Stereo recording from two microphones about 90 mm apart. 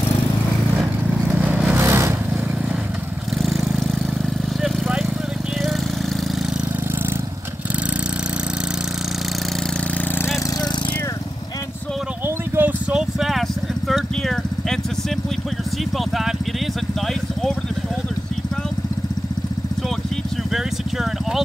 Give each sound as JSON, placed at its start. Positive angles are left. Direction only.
{"t": 1.8, "sound": "vehicle", "side_deg": -30}
{"t": 3.4, "sound": "vehicle", "side_deg": 0}
{"t": 12.6, "sound": "vehicle", "side_deg": -25}
{"t": 12.9, "sound": "vehicle", "side_deg": 0}
{"t": 20.5, "sound": "vehicle", "side_deg": 0}